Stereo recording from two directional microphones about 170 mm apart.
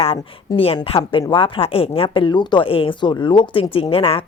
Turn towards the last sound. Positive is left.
turn(degrees=35)  # may be behind; listen again after turning